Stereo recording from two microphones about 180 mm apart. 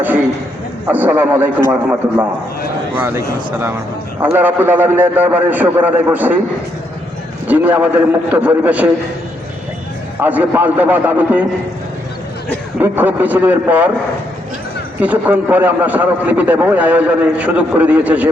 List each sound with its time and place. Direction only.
0.9 s a man's voice: 10° right (ahead or behind)
7.4 s a man's voice: 10° right (ahead or behind)
10.2 s a man's voice: 10° right (ahead or behind)
12.8 s a man's voice: 10° right (ahead or behind)
15.0 s a man's voice: 10° right (ahead or behind)